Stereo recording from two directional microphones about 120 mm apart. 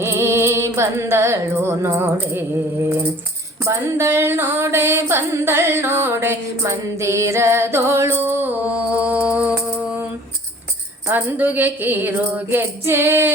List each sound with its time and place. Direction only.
0.0 s music: 20° right (ahead or behind)
3.6 s music: 20° right (ahead or behind)
11.1 s music: 15° right (ahead or behind)